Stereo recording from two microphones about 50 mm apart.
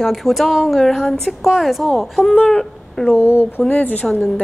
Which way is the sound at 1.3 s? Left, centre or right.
Centre.